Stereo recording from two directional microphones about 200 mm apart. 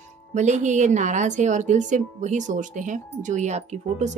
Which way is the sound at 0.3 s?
35° right (ahead or behind).